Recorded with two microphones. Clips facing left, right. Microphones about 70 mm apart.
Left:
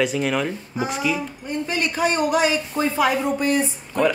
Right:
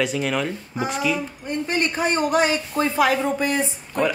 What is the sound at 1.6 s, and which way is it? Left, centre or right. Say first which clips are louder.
Speech: right 2 dB; right.